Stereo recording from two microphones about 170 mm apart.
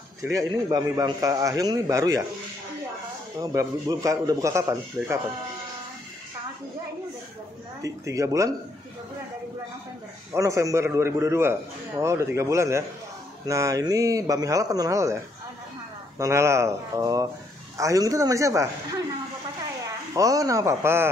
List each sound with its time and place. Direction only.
0.2 s a man's voice: 20° right (ahead or behind)
3.3 s a man's voice: 20° right (ahead or behind)
7.8 s a man's voice: 20° right (ahead or behind)
10.3 s a man's voice: 20° right (ahead or behind)
16.2 s a man's voice: 15° right (ahead or behind)
20.2 s a man's voice: 20° right (ahead or behind)